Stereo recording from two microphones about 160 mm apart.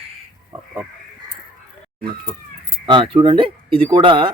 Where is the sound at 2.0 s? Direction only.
35° right (ahead or behind).